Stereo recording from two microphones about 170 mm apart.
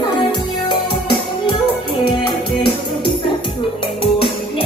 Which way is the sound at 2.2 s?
30° left (ahead or behind).